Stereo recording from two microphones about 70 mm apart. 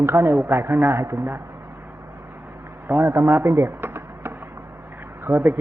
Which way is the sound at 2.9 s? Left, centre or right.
Right.